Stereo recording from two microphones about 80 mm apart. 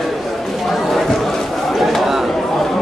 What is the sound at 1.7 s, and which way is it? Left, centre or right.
Chatter, centre.